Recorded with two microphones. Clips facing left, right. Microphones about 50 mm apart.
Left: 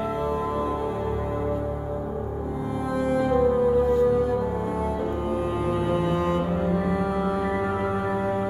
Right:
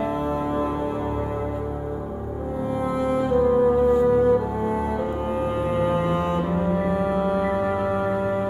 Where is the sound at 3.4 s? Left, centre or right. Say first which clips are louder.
Right 3 dB; centre.